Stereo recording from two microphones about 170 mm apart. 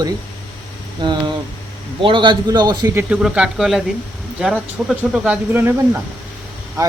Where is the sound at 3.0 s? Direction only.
5° right (ahead or behind).